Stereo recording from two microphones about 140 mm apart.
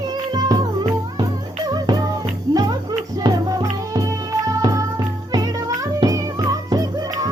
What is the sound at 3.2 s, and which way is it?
Music, 25° right (ahead or behind).